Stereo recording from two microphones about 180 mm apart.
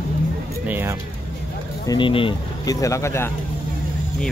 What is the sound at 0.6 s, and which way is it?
Speech, 10° right (ahead or behind).